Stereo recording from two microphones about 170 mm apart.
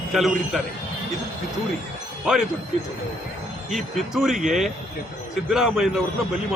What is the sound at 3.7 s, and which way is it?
Speech, centre (ahead or behind).